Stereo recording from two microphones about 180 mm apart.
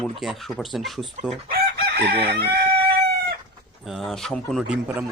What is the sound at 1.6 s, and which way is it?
Chicken, 65° right (ahead or behind).